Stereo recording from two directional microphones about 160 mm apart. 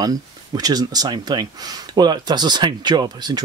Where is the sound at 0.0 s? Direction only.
25° right (ahead or behind).